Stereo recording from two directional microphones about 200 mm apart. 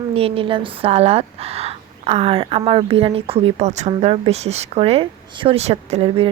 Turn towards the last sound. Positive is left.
turn(degrees=-30)  # may be behind; listen again after turning